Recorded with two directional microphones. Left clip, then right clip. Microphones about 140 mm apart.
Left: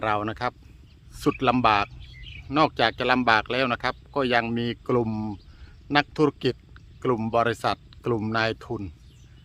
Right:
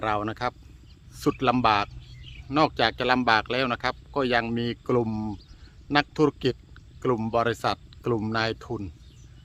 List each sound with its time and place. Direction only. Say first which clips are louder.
0.0 s speech: left 1 dB; 30° left (ahead or behind)